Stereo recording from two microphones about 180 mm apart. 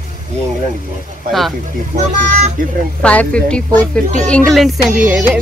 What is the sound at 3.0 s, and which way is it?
Speech, 5° left (ahead or behind).